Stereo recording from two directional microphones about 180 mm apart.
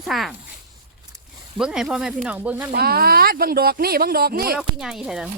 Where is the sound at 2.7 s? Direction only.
60° right (ahead or behind).